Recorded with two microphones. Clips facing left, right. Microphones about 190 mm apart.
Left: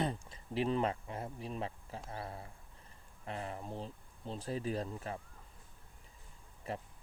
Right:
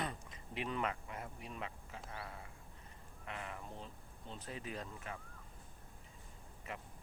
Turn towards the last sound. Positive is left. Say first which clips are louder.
# left 6 dB
turn(degrees=35)  # may be behind; listen again after turning